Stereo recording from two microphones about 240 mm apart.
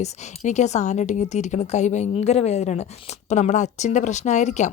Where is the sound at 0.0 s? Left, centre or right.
Left.